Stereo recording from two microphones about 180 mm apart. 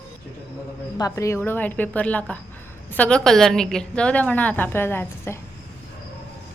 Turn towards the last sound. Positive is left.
turn(degrees=10)  # may be behind; listen again after turning